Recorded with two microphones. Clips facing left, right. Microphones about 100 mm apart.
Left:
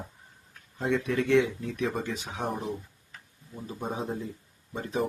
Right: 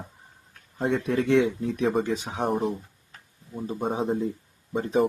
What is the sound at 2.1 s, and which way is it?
Speech, 35° right (ahead or behind).